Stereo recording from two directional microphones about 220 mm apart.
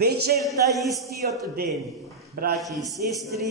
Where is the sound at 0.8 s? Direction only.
Centre (ahead or behind).